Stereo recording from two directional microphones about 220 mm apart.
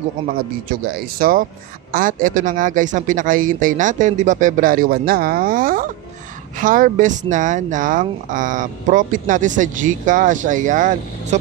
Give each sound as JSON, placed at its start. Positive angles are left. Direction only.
{"t": 0.4, "sound": "speech", "side_deg": -40}